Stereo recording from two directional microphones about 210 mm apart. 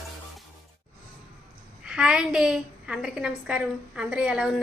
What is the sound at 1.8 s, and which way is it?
A woman's voice, 5° right (ahead or behind).